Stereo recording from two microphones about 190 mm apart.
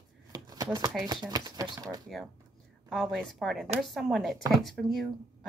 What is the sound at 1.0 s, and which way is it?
Speech, 20° right (ahead or behind).